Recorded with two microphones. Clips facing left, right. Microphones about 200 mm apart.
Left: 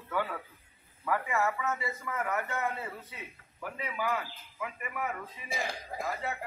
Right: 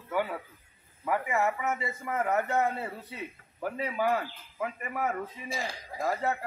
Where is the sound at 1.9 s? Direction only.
30° right (ahead or behind).